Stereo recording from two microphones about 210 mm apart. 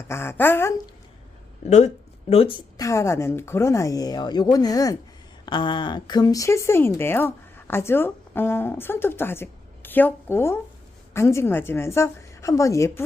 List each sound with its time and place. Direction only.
0.1 s speech: 10° left (ahead or behind)
1.6 s speech: 35° left (ahead or behind); by 13.0 s 15° left (ahead or behind)